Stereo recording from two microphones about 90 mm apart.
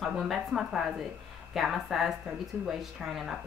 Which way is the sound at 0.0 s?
Centre (ahead or behind).